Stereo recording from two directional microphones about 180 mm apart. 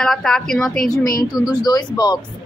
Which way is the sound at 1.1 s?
20° left (ahead or behind).